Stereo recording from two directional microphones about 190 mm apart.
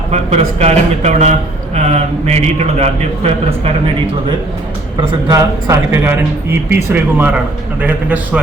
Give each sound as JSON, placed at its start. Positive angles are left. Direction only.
{"t": 0.1, "sound": "speech", "side_deg": -35}
{"t": 4.9, "sound": "speech", "side_deg": -15}